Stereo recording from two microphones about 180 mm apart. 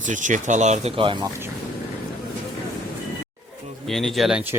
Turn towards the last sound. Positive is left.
turn(degrees=-5)  # may be behind; listen again after turning